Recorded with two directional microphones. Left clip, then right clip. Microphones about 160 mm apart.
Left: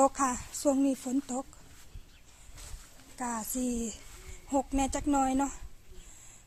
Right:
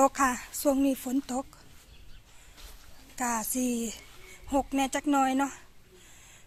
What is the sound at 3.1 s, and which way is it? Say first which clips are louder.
A woman's voice: right 5 dB; 20° right (ahead or behind).